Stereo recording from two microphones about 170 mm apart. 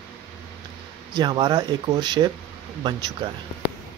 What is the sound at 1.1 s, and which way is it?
Speech, 25° right (ahead or behind).